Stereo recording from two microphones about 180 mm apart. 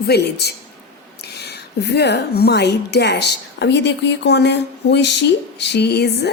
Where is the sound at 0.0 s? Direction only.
65° left (ahead or behind).